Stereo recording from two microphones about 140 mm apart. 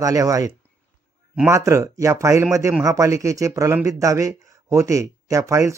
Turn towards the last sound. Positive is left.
turn(degrees=-20)  # may be behind; listen again after turning